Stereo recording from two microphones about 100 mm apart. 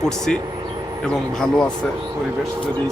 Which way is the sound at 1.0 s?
5° left (ahead or behind).